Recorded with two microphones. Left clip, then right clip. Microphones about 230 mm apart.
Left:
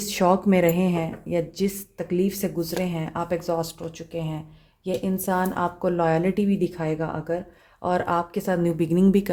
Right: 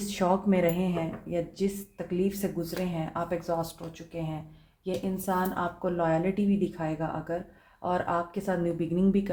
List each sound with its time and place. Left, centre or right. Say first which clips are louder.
0.0 s speech: left 6 dB; left
5.1 s speech: left 4 dB; left